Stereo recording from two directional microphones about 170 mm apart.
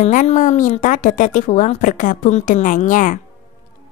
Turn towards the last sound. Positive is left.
turn(degrees=50)  # may be behind; listen again after turning